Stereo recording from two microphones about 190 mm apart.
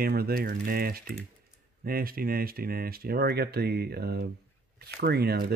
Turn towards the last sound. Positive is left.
turn(degrees=-55)  # may be behind; listen again after turning